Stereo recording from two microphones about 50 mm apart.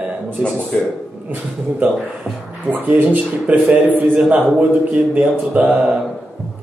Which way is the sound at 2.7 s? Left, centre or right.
Right.